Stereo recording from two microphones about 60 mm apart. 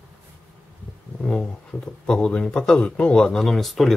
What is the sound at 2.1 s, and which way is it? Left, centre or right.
Speech, centre.